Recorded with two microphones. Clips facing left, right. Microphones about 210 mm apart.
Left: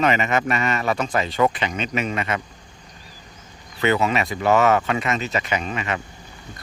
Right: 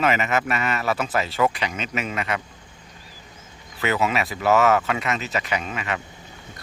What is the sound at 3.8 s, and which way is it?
Speech, 5° right (ahead or behind).